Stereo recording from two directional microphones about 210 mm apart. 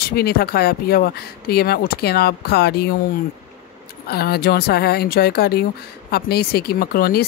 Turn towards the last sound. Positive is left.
turn(degrees=45)  # may be behind; listen again after turning